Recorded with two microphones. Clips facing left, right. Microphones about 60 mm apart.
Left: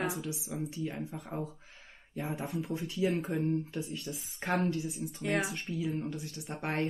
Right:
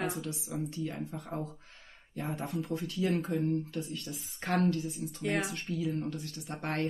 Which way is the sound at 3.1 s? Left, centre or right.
Centre.